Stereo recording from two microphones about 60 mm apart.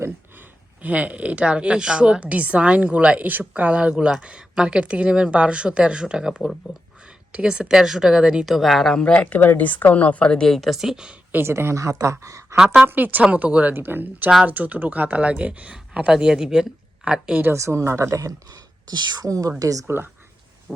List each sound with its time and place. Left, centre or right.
0.8 s a woman's voice: right
8.4 s speech: centre
9.1 s speech: left; by 11.1 s centre
11.1 s speech: right
11.4 s speech: right
12.5 s speech: centre
12.9 s a woman's voice: right
13.7 s a woman's voice: right; by 17.4 s centre
17.5 s speech: right
20.7 s thunder: centre